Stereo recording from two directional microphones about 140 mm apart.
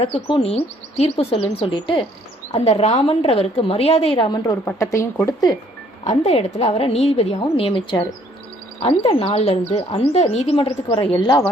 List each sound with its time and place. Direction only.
0.0 s speech: 40° left (ahead or behind)
2.5 s speech: 50° left (ahead or behind)
4.6 s speech: 20° left (ahead or behind)
6.1 s speech: 55° left (ahead or behind); by 9.1 s 30° left (ahead or behind)
9.1 s speech: 45° left (ahead or behind)
11.2 s speech: 25° left (ahead or behind)